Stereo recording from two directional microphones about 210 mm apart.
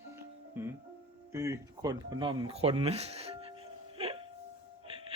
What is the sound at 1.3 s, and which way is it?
Speech, 15° right (ahead or behind).